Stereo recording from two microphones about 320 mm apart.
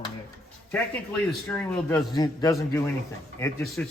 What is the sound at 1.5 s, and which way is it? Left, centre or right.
Speech, centre.